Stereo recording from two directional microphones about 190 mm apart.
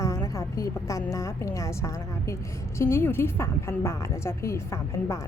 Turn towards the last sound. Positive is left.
turn(degrees=15)  # may be behind; listen again after turning